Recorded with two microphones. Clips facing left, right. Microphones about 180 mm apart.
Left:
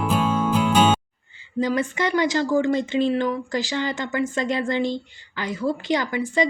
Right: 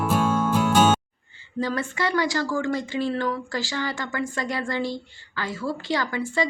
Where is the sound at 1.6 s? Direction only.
20° left (ahead or behind).